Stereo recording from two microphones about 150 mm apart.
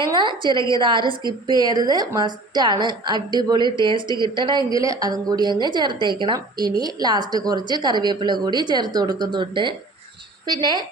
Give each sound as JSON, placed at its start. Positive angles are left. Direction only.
{"t": 0.0, "sound": "a woman's voice", "side_deg": -30}